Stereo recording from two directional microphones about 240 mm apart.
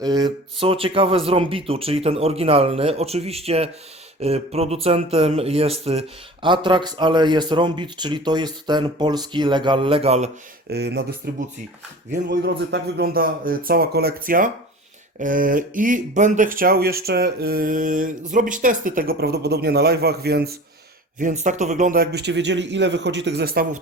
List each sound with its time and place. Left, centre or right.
0.0 s speech: centre
10.7 s speech: right